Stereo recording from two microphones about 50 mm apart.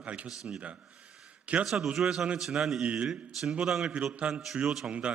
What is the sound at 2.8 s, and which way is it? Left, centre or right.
Speech, right.